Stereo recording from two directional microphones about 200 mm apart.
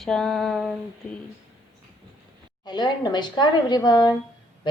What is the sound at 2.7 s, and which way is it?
A woman's voice, 20° left (ahead or behind).